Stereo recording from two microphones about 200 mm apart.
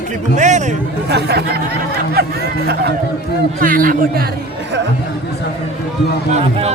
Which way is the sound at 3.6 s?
45° right (ahead or behind).